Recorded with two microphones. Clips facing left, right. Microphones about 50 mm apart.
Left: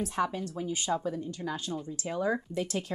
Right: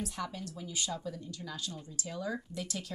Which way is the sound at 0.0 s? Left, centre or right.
Left.